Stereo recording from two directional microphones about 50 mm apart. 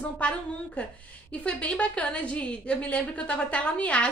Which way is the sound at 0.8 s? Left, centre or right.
Left.